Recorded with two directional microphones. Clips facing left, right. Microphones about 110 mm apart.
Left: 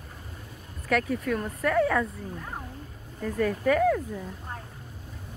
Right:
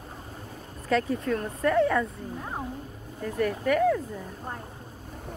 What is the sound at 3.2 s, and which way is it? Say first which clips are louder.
Speech: left 1 dB; 10° right (ahead or behind).